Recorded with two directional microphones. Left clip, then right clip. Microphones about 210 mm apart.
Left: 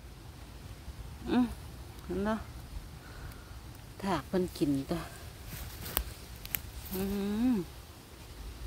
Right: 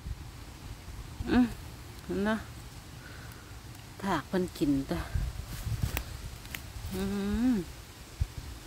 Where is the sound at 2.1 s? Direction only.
10° right (ahead or behind).